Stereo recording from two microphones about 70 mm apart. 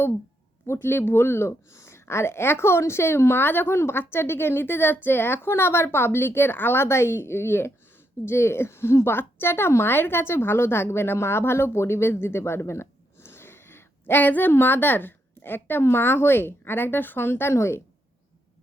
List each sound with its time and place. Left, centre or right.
0.7 s a woman's voice: left